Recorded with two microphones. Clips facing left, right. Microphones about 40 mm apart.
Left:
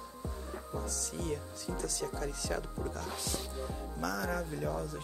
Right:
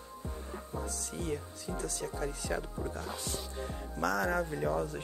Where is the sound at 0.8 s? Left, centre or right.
Right.